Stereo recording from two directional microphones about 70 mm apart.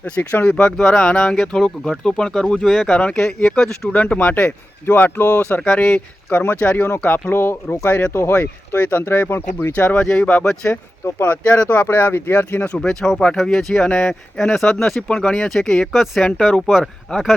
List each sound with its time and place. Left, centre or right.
0.0 s speech: left
0.8 s speech: centre
4.4 s speech: left
5.8 s speech: left
7.3 s speech: left
8.8 s speech: left
10.4 s speech: centre
10.7 s speech: left
11.4 s speech: centre; by 12.5 s left
12.5 s speech: left
12.7 s speech: centre
13.8 s speech: centre
14.1 s speech: centre